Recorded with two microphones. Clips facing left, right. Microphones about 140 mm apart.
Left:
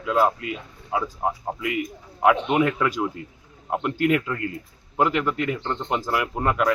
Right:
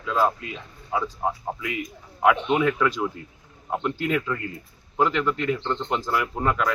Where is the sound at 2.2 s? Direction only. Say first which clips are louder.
Left 1 dB; 5° left (ahead or behind).